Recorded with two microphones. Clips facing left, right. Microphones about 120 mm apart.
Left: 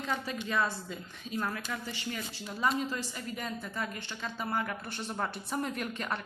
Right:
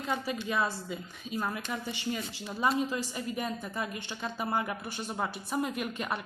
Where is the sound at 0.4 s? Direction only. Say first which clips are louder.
Left 2 dB; 10° right (ahead or behind).